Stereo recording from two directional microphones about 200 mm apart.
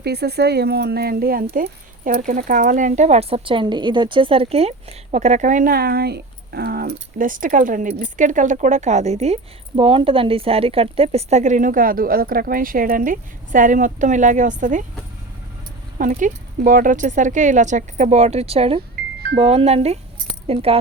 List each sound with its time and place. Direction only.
0.0 s speech: 55° right (ahead or behind)
1.5 s speech: 40° right (ahead or behind)
16.0 s speech: 40° right (ahead or behind)